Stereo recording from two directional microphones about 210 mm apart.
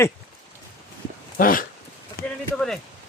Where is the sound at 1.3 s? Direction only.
40° left (ahead or behind).